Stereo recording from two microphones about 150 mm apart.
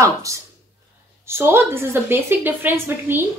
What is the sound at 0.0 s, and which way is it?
A woman's voice, 20° right (ahead or behind).